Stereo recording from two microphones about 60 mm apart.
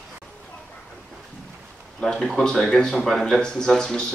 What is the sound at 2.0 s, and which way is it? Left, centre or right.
Speech, centre.